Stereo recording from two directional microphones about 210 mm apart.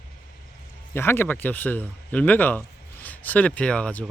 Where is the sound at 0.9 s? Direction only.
10° left (ahead or behind).